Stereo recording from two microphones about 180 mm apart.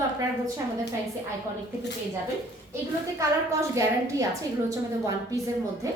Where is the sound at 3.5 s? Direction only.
15° right (ahead or behind).